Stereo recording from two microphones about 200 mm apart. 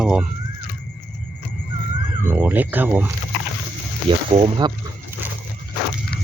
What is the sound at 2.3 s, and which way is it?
Speech, 10° right (ahead or behind).